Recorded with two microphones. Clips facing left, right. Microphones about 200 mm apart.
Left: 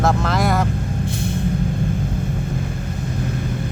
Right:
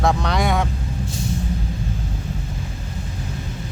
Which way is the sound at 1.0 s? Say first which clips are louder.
Even; 55° left (ahead or behind).